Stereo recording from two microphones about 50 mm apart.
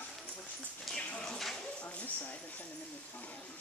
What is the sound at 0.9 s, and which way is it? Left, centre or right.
Clip-clop, centre.